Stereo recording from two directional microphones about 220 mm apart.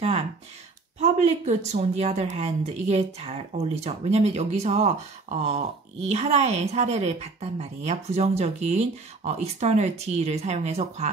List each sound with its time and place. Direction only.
0.9 s a woman's voice: 30° right (ahead or behind)